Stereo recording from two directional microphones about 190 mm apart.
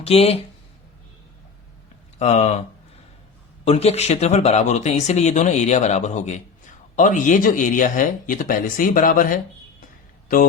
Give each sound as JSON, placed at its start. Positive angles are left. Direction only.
{"t": 0.0, "sound": "speech", "side_deg": 30}
{"t": 2.1, "sound": "speech", "side_deg": 35}
{"t": 3.6, "sound": "speech", "side_deg": 35}